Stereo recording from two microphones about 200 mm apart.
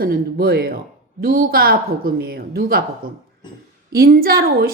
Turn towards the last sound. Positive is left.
turn(degrees=-50)  # may be behind; listen again after turning